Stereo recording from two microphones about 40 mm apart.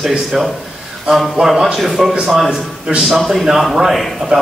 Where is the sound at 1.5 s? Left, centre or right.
Centre.